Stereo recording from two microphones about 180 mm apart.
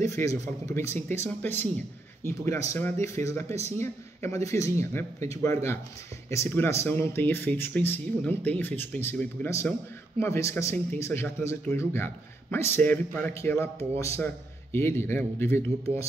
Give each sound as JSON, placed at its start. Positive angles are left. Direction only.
{"t": 0.0, "sound": "speech", "side_deg": 15}